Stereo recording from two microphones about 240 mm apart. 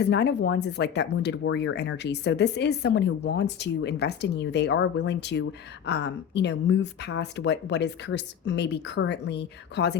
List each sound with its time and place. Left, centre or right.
0.0 s speech: left